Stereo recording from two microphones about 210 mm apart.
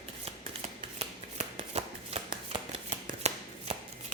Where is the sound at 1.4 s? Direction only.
30° right (ahead or behind).